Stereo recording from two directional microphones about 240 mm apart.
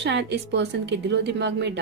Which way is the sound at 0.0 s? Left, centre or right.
Right.